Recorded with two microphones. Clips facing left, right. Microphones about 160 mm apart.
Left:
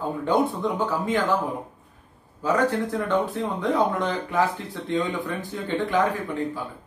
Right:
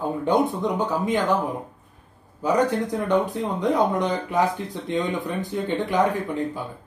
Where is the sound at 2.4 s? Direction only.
15° right (ahead or behind).